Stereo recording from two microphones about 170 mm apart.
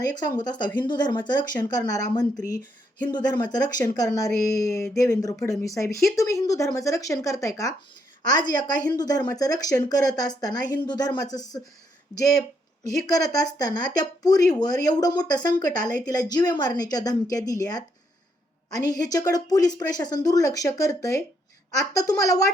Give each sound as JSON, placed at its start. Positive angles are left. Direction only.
{"t": 0.0, "sound": "a woman's voice", "side_deg": 25}
{"t": 13.1, "sound": "a woman's voice", "side_deg": 20}
{"t": 18.9, "sound": "a woman's voice", "side_deg": 20}